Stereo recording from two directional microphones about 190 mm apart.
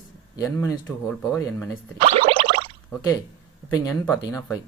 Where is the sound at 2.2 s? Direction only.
30° right (ahead or behind).